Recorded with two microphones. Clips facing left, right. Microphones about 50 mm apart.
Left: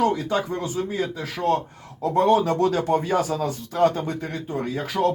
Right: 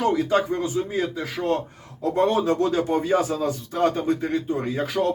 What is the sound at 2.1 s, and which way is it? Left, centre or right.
Speech, right.